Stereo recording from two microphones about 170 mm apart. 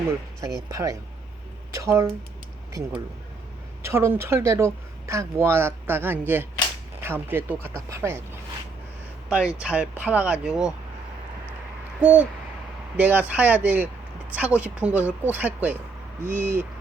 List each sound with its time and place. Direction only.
0.7 s speech: 20° right (ahead or behind)
9.3 s speech: 5° right (ahead or behind)
11.9 s speech: 10° right (ahead or behind)